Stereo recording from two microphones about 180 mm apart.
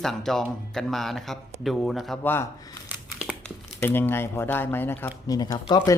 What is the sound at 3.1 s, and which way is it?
Crumpling, centre (ahead or behind).